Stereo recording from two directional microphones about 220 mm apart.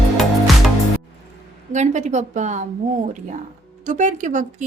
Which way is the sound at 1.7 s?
30° right (ahead or behind).